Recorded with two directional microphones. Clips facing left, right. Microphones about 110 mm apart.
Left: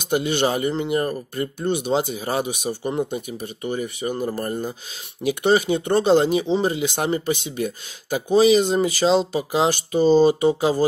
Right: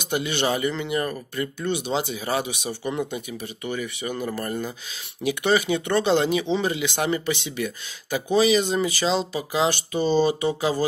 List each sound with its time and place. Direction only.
0.1 s speech: 45° left (ahead or behind)